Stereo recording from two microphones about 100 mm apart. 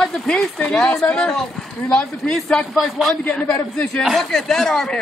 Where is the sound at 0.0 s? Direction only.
5° left (ahead or behind).